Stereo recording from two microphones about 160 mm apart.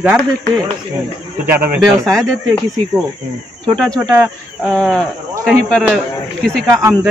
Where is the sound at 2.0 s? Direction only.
5° left (ahead or behind).